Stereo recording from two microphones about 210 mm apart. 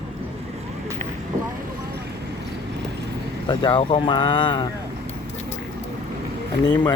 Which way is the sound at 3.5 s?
25° left (ahead or behind).